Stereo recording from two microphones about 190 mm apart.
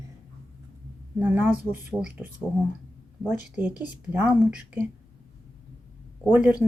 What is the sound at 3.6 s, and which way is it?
Speech, 10° right (ahead or behind).